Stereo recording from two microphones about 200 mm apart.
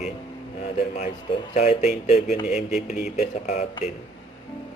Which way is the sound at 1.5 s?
35° left (ahead or behind).